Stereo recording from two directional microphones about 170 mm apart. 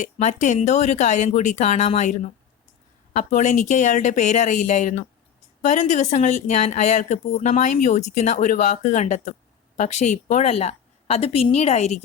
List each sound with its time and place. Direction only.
0.0 s a woman's voice: 45° left (ahead or behind)